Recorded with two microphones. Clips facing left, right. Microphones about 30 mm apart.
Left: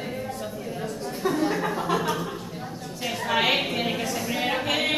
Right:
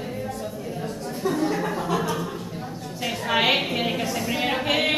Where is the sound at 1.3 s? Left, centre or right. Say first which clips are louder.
Right 1 dB; centre.